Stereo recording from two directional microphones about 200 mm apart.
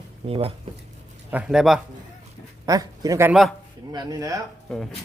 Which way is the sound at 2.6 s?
15° right (ahead or behind).